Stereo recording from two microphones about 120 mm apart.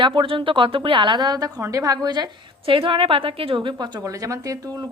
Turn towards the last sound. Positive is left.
turn(degrees=-30)  # may be behind; listen again after turning